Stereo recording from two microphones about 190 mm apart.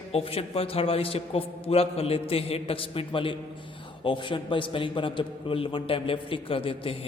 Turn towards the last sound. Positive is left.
turn(degrees=30)  # may be behind; listen again after turning